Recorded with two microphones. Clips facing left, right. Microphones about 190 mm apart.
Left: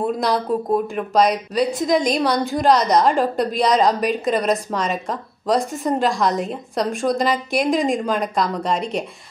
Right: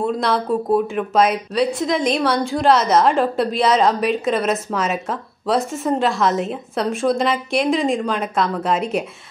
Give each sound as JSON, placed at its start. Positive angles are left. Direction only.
{"t": 0.0, "sound": "a woman's voice", "side_deg": 0}